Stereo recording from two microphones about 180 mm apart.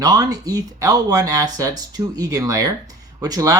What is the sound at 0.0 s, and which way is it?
Speech, 20° right (ahead or behind).